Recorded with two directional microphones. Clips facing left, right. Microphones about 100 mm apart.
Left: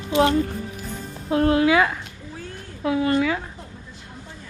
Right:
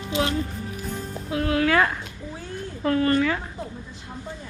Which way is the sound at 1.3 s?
30° left (ahead or behind).